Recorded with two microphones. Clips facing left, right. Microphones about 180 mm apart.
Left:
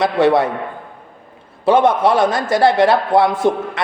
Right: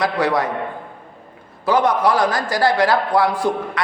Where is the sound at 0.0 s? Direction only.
25° left (ahead or behind).